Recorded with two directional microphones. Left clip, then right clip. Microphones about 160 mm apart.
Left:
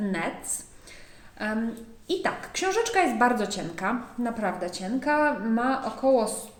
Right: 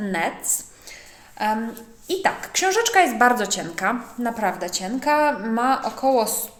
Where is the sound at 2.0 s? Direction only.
15° left (ahead or behind).